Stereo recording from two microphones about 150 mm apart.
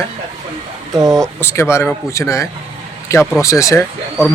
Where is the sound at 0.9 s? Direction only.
25° right (ahead or behind).